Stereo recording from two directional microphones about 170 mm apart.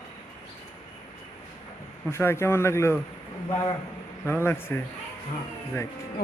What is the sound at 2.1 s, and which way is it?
Speech, 15° left (ahead or behind).